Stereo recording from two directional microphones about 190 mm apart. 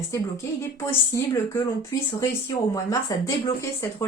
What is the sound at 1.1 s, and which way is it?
Speech, 15° left (ahead or behind).